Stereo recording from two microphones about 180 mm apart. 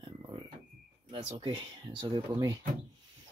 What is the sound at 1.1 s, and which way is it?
Speech, 30° right (ahead or behind).